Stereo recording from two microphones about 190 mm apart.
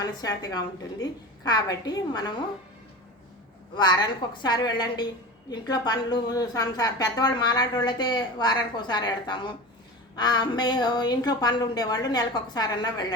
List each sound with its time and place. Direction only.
0.0 s a woman's voice: 20° left (ahead or behind)
3.8 s a woman's voice: 20° left (ahead or behind)